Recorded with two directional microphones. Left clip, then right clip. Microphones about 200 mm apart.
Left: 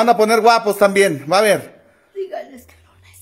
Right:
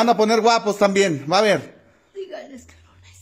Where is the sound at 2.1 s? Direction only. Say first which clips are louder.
Left 6 dB; centre (ahead or behind).